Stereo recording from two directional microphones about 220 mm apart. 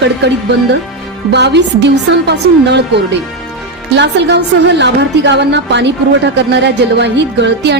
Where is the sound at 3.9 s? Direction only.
50° right (ahead or behind).